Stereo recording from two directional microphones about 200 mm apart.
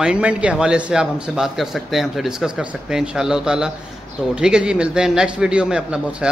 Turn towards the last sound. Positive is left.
turn(degrees=-5)  # may be behind; listen again after turning